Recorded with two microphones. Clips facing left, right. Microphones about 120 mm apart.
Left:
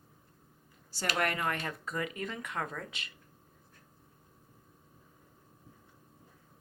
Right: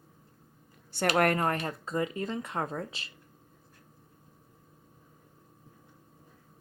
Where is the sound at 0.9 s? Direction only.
55° right (ahead or behind); by 3.1 s 30° right (ahead or behind).